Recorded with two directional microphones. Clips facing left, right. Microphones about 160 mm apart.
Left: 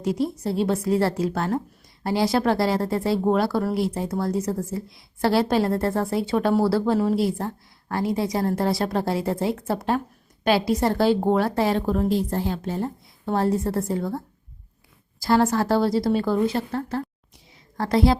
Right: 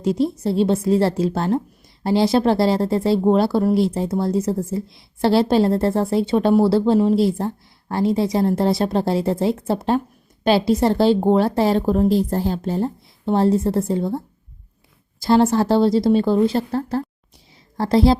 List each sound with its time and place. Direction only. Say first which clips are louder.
0.0 s speech: right 5 dB; 25° right (ahead or behind)